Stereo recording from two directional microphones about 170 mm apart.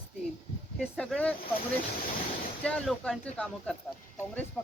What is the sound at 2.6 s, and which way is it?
Speech, centre (ahead or behind).